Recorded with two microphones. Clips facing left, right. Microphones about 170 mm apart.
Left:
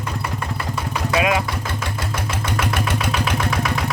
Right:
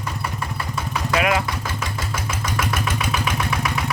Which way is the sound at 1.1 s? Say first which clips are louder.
Left 1 dB; 20° left (ahead or behind).